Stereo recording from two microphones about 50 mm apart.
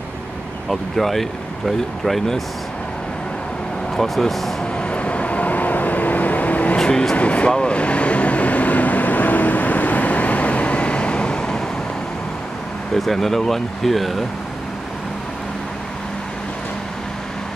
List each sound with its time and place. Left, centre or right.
0.7 s speech: centre
3.9 s speech: centre
4.7 s vehicle: left
6.8 s speech: centre
7.5 s vehicle: left
12.9 s speech: centre